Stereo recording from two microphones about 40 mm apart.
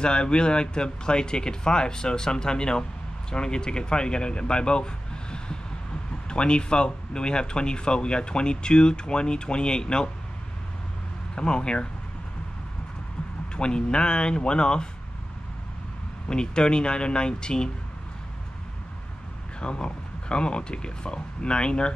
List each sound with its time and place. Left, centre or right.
0.0 s speech: left
11.3 s speech: left
13.6 s speech: left
16.3 s speech: left
19.6 s speech: left